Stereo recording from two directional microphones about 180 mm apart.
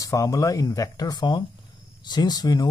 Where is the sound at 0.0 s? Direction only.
20° left (ahead or behind).